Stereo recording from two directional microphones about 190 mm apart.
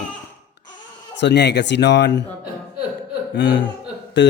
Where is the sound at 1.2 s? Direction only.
65° left (ahead or behind).